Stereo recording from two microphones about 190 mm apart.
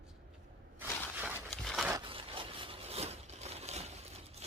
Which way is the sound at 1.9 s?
25° right (ahead or behind).